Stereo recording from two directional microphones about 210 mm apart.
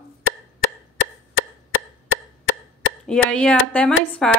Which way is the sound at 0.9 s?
65° left (ahead or behind).